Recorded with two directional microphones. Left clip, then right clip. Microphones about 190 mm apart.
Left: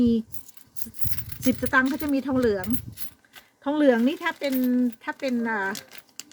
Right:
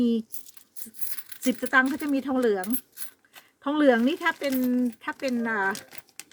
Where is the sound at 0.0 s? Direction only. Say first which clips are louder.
Left 2 dB; 5° right (ahead or behind).